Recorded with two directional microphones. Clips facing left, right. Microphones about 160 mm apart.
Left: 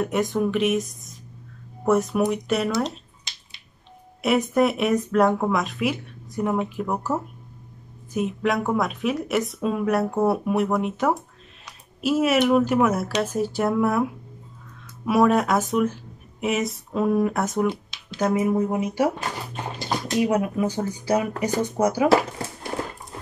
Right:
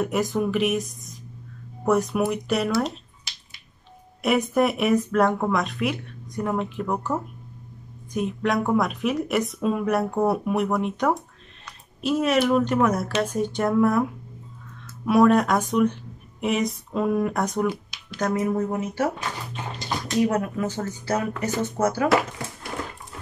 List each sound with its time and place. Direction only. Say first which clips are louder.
0.0 s speech: left 1 dB; centre (ahead or behind)
4.2 s speech: left 1 dB; centre (ahead or behind)
15.0 s speech: right 1 dB; centre (ahead or behind)
17.6 s a sound: left 1 dB; 25° left (ahead or behind)
18.2 s speech: left 2 dB; 10° left (ahead or behind)
20.2 s speech: left 1 dB; 10° left (ahead or behind)